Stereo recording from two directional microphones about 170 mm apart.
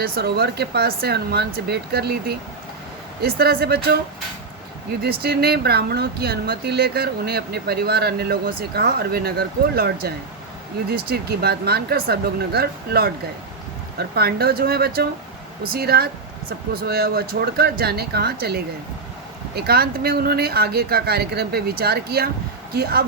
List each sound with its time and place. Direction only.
0.0 s speech: 65° right (ahead or behind)
5.0 s speech: 65° right (ahead or behind)
14.2 s speech: 70° right (ahead or behind)